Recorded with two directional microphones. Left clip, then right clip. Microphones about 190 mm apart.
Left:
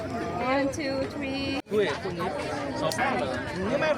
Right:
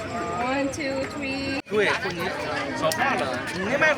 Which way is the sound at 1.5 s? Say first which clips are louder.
Right 4 dB; 10° right (ahead or behind).